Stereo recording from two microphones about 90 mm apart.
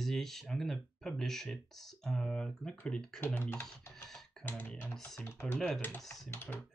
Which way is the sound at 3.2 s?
25° left (ahead or behind).